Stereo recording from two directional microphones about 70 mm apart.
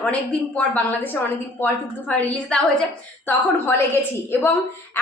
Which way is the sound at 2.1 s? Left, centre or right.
Centre.